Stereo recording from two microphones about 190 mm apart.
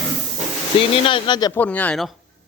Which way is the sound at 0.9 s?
30° left (ahead or behind).